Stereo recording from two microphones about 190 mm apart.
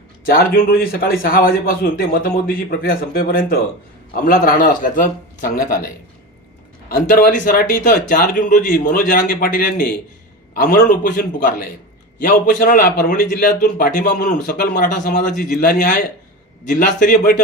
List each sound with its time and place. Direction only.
0.3 s a man's voice: 50° left (ahead or behind)